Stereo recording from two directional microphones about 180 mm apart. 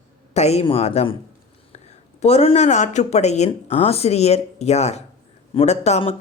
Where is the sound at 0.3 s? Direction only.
35° left (ahead or behind).